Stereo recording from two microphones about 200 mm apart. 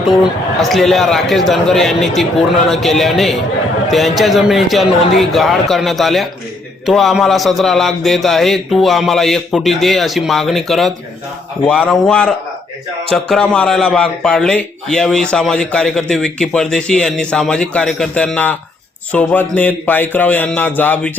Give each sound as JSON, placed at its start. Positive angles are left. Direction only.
{"t": 0.6, "sound": "a man's voice", "side_deg": 0}